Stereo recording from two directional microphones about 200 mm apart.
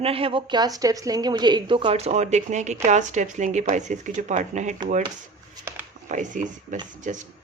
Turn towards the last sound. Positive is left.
turn(degrees=-40)  # may be behind; listen again after turning